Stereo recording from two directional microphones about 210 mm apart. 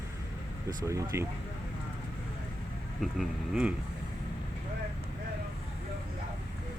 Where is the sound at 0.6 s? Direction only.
15° right (ahead or behind).